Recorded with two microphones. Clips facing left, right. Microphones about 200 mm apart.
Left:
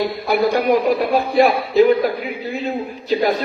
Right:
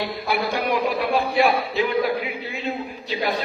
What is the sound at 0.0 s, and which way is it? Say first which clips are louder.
A man's voice: left 7 dB; 45° left (ahead or behind).